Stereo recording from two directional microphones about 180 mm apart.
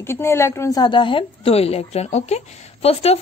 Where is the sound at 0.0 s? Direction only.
15° left (ahead or behind).